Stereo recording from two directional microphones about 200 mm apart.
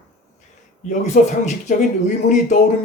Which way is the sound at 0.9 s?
40° left (ahead or behind).